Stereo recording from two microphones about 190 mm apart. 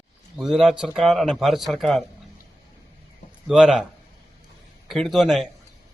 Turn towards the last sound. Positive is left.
turn(degrees=0)  # may be behind; listen again after turning